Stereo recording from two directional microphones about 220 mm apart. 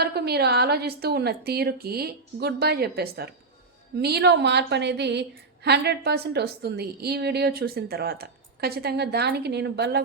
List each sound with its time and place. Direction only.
0.0 s a woman's voice: 45° right (ahead or behind)